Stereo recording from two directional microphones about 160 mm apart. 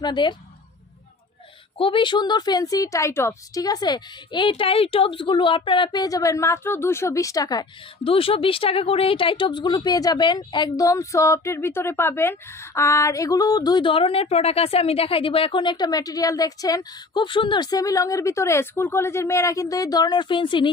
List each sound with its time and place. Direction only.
0.0 s a woman's voice: 30° left (ahead or behind)
1.8 s a woman's voice: 30° left (ahead or behind)